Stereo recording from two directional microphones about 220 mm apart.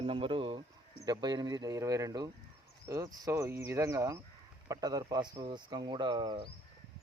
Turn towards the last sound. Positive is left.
turn(degrees=-20)  # may be behind; listen again after turning